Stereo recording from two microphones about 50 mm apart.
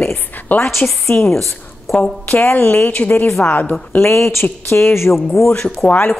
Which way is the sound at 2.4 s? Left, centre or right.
Left.